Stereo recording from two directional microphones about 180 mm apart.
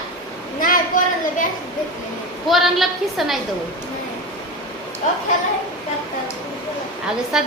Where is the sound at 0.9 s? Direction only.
45° left (ahead or behind).